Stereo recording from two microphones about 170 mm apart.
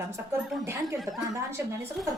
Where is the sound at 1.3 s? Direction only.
15° right (ahead or behind).